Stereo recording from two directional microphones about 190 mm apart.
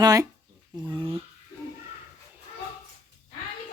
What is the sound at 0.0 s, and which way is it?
Speech, 20° right (ahead or behind).